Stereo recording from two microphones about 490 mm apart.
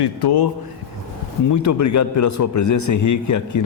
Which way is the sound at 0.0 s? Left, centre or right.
Left.